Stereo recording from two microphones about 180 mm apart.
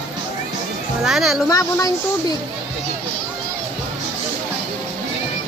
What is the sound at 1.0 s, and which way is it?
Speech, 5° right (ahead or behind).